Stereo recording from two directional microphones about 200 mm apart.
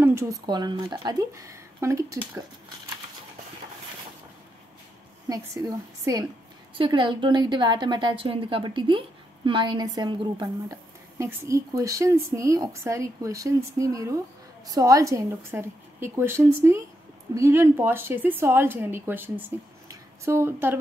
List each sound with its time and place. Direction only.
0.0 s a woman's voice: 15° right (ahead or behind)
5.3 s a woman's voice: 20° right (ahead or behind)